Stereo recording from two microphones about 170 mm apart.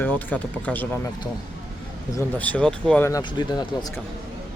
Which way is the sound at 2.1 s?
10° left (ahead or behind).